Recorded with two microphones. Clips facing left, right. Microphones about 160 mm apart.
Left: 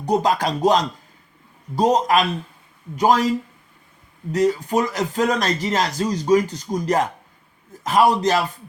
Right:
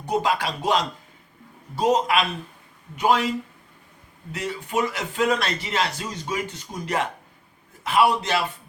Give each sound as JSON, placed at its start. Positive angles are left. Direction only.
{"t": 0.0, "sound": "speech", "side_deg": 40}